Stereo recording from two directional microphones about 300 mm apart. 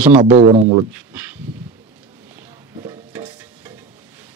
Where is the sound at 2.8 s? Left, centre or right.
Centre.